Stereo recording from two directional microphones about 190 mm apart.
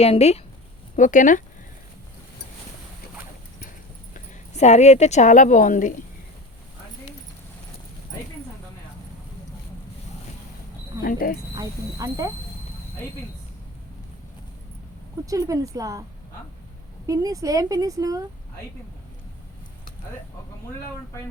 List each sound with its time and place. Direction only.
0.0 s speech: 35° left (ahead or behind)
4.1 s speech: 35° left (ahead or behind)
11.0 s speech: 50° left (ahead or behind)
11.5 s speech: 20° right (ahead or behind)
15.3 s a woman's voice: 15° right (ahead or behind)
17.1 s a woman's voice: 20° right (ahead or behind)